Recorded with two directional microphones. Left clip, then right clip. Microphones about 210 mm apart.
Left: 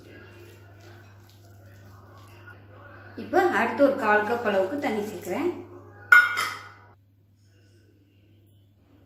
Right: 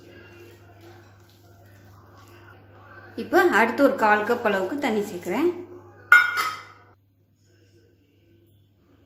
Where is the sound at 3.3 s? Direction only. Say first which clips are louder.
Right 3 dB; 40° right (ahead or behind).